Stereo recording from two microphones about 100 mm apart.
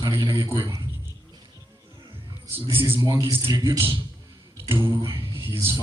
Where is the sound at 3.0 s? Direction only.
35° right (ahead or behind).